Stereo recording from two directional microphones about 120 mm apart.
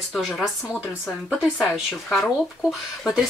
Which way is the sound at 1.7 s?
Centre (ahead or behind).